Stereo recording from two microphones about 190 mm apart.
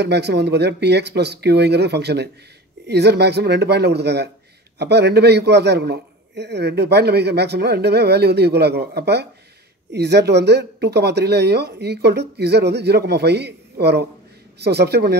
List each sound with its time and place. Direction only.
0.0 s a man's voice: 60° right (ahead or behind)